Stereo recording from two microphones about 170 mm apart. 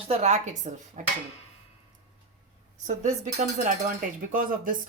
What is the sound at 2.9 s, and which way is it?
Speech, 45° right (ahead or behind).